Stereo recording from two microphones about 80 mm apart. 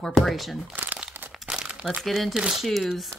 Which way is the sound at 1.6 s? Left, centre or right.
Centre.